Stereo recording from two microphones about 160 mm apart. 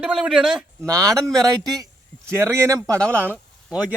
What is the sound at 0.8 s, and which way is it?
A man's voice, 20° right (ahead or behind).